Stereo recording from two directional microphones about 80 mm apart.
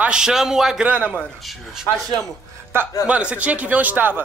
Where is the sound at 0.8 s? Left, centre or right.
Centre.